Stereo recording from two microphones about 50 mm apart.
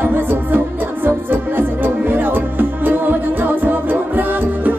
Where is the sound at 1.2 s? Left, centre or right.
Right.